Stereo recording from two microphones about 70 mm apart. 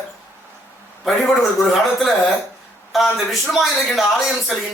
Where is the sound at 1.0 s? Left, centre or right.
Centre.